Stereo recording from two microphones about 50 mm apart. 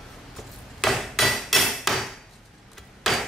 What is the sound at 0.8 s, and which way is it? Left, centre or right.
Hammer, centre.